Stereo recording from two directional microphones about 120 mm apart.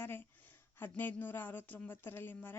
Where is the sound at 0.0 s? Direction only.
15° left (ahead or behind).